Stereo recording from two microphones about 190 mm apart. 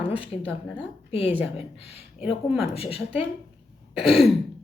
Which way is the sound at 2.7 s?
30° left (ahead or behind).